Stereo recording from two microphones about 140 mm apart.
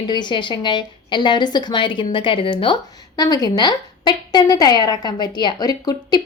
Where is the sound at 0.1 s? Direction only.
35° left (ahead or behind).